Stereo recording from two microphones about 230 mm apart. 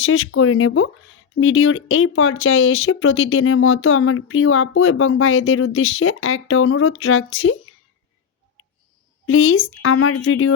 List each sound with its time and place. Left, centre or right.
0.0 s speech: left
9.2 s speech: left